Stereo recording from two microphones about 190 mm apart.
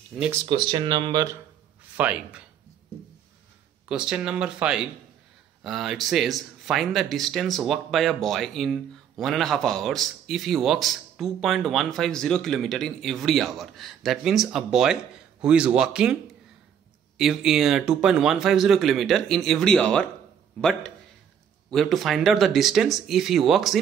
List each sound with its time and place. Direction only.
0.5 s speech: 25° right (ahead or behind)
2.0 s speech: 5° right (ahead or behind)
3.9 s speech: 5° right (ahead or behind)
21.6 s speech: centre (ahead or behind)